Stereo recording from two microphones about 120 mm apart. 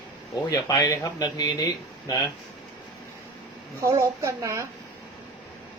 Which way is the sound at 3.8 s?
25° right (ahead or behind).